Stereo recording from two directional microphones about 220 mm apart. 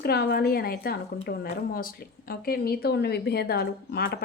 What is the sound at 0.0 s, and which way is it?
A woman's voice, 45° left (ahead or behind).